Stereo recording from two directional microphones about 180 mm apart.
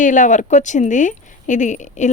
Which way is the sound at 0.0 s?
45° left (ahead or behind).